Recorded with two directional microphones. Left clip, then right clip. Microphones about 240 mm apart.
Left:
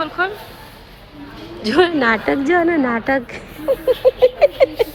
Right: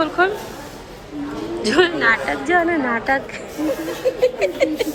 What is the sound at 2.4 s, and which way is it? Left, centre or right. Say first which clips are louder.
Speech: left 1 dB; left.